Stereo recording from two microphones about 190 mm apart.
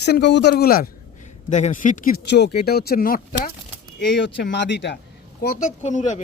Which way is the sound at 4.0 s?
65° left (ahead or behind).